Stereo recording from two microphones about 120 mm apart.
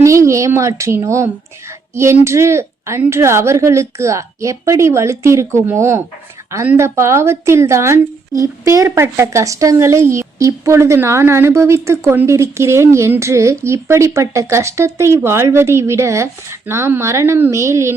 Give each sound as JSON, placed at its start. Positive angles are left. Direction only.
{"t": 0.0, "sound": "a woman's voice", "side_deg": -25}